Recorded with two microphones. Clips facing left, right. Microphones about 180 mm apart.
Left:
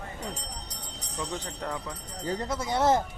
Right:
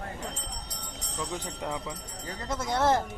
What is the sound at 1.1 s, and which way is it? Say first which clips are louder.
Speech: even; 10° right (ahead or behind).